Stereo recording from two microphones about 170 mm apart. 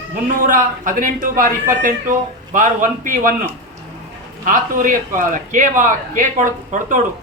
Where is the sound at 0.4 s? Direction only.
50° right (ahead or behind).